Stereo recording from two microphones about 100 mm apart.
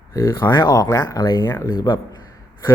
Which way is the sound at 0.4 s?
45° left (ahead or behind).